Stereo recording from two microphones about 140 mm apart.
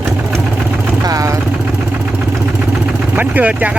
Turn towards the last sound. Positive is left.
turn(degrees=-10)  # may be behind; listen again after turning